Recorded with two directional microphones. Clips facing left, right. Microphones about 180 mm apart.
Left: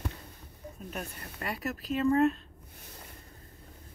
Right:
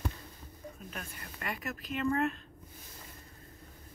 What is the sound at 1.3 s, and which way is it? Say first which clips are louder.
Speech: left 4 dB; 35° left (ahead or behind).